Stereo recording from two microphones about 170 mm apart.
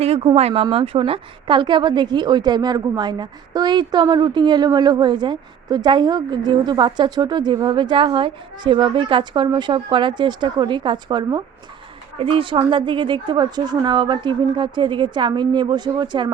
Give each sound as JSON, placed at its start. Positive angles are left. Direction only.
{"t": 0.0, "sound": "a woman's voice", "side_deg": -35}